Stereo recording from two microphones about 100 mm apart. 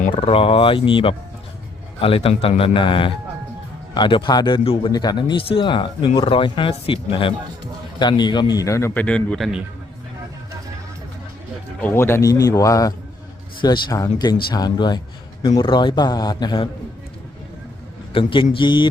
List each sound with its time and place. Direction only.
0.1 s a man's voice: 65° left (ahead or behind)
4.8 s a man's voice: 40° left (ahead or behind); by 7.3 s 60° left (ahead or behind)
7.9 s a man's voice: 45° left (ahead or behind)
9.0 s speech: 10° left (ahead or behind)
9.4 s a man's voice: 5° right (ahead or behind)
11.8 s speech: 20° left (ahead or behind)
12.3 s speech: 35° left (ahead or behind)
13.6 s a man's voice: 50° left (ahead or behind)
13.9 s a man's voice: 40° left (ahead or behind)
18.1 s speech: 60° left (ahead or behind)